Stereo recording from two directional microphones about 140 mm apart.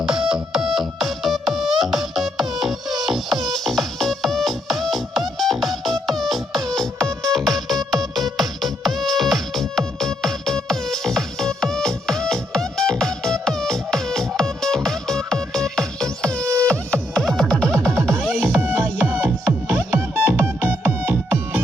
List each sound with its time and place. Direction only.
0.0 s music: 5° right (ahead or behind)
18.6 s music: 10° right (ahead or behind)